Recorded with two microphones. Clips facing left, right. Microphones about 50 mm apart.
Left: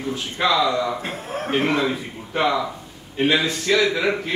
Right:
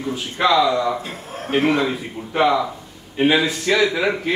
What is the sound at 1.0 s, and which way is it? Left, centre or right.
Speech, left.